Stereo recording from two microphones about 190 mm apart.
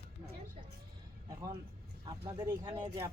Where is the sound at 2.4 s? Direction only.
15° right (ahead or behind).